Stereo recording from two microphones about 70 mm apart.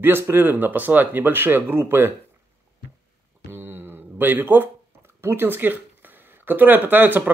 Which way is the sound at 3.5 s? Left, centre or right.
Right.